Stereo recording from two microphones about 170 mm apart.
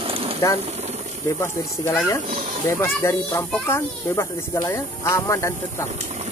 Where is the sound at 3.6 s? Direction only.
15° left (ahead or behind).